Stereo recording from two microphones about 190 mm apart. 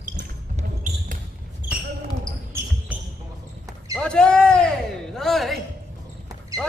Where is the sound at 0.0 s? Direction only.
40° right (ahead or behind).